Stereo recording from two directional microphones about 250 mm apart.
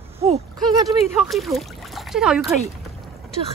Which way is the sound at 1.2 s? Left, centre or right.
Centre.